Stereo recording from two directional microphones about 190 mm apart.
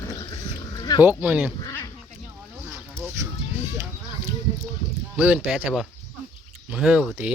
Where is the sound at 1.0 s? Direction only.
10° right (ahead or behind).